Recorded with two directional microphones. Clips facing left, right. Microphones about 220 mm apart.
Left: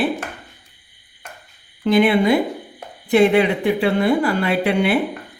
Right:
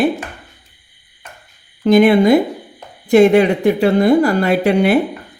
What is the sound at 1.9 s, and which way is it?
Speech, 45° right (ahead or behind).